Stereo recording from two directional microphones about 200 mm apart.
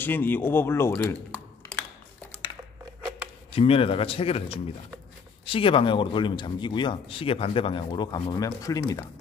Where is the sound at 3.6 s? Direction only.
25° left (ahead or behind).